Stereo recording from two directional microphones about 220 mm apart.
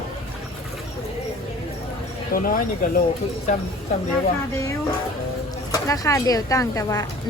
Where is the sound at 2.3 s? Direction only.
40° left (ahead or behind).